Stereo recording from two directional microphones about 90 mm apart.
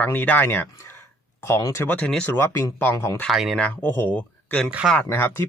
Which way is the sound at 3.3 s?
5° right (ahead or behind).